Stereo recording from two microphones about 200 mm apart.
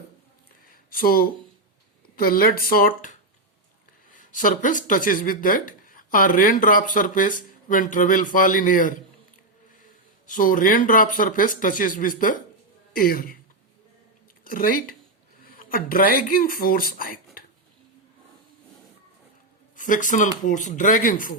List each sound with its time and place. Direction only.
0.7 s a sound: 45° left (ahead or behind)
2.1 s speech: 45° left (ahead or behind)
10.2 s speech: 40° left (ahead or behind)
14.4 s speech: 45° left (ahead or behind)
17.4 s dishes: 45° left (ahead or behind)
19.7 s speech: 40° left (ahead or behind)